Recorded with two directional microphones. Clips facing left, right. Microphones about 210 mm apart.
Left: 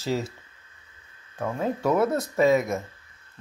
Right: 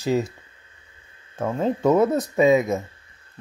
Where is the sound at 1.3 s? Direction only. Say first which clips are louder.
Right 4 dB; 25° right (ahead or behind).